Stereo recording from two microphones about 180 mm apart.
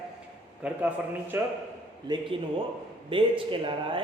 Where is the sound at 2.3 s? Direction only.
30° right (ahead or behind).